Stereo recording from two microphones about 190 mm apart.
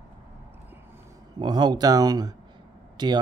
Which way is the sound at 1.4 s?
25° right (ahead or behind).